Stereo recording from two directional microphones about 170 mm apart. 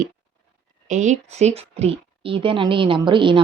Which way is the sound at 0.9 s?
45° right (ahead or behind).